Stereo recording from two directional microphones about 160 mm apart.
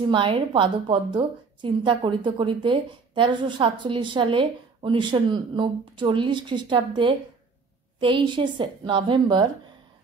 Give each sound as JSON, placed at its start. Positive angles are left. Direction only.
{"t": 0.0, "sound": "a woman's voice", "side_deg": -30}